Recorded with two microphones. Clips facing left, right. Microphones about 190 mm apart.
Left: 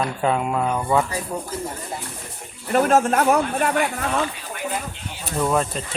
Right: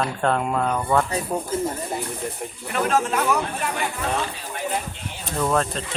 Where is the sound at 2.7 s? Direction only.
45° left (ahead or behind).